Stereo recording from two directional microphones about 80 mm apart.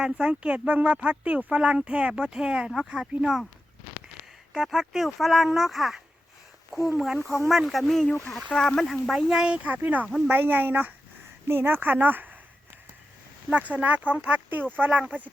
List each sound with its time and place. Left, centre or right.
0.0 s speech: centre
4.5 s speech: centre; by 12.4 s right
13.5 s speech: centre